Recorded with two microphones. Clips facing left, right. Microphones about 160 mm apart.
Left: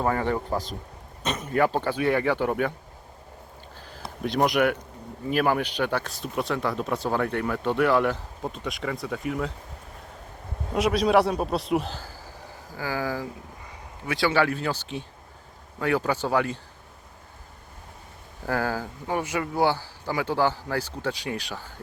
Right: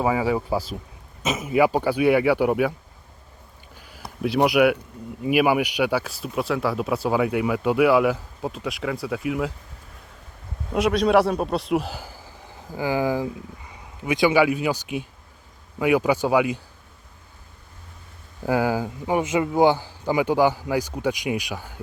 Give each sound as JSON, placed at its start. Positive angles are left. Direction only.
{"t": 0.0, "sound": "speech", "side_deg": -5}
{"t": 3.8, "sound": "a sound", "side_deg": -10}
{"t": 4.4, "sound": "speech", "side_deg": -10}
{"t": 10.8, "sound": "a man's voice", "side_deg": 0}
{"t": 11.9, "sound": "a sound", "side_deg": -15}
{"t": 12.7, "sound": "speech", "side_deg": -15}
{"t": 18.4, "sound": "speech", "side_deg": -15}